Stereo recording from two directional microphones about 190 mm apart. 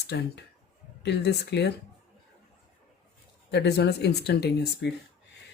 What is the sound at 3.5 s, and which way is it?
Speech, 60° left (ahead or behind).